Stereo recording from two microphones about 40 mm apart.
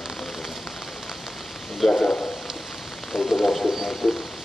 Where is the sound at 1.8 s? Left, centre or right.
Centre.